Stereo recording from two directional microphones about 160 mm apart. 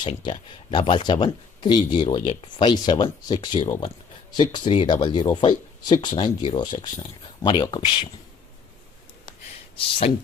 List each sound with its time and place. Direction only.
0.0 s speech: 30° left (ahead or behind)